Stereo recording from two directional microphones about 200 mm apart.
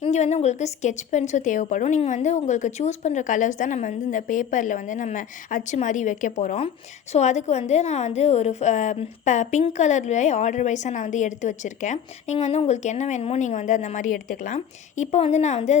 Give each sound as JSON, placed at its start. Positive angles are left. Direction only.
{"t": 0.0, "sound": "a woman's voice", "side_deg": 35}